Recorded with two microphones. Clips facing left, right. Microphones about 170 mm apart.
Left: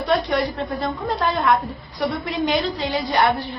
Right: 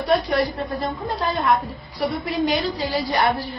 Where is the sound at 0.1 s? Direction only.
30° right (ahead or behind).